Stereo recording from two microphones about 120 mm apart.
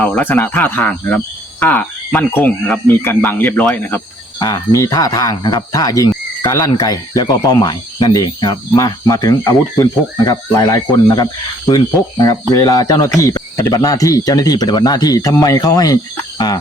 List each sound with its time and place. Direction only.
0.0 s speech: 15° left (ahead or behind)
4.4 s speech: 30° left (ahead or behind)